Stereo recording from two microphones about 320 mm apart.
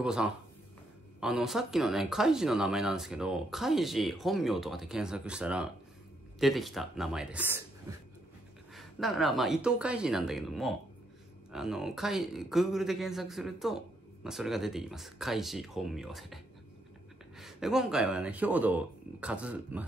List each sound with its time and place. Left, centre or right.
0.0 s speech: centre
8.7 s speech: centre
17.4 s speech: centre